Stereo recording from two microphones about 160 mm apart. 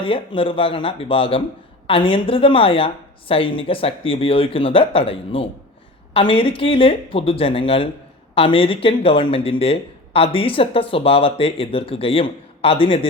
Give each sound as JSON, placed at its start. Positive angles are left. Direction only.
{"t": 0.0, "sound": "speech", "side_deg": 35}